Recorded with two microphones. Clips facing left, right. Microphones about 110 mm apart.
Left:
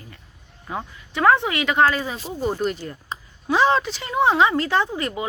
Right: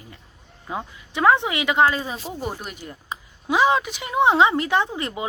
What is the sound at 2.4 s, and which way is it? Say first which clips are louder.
Speech: left 7 dB; 10° right (ahead or behind).